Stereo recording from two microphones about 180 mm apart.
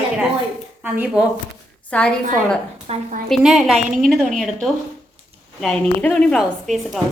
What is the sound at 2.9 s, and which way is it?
Speech, 35° right (ahead or behind).